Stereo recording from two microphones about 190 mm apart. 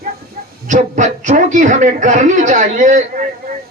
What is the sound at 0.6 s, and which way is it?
A man's voice, 40° right (ahead or behind).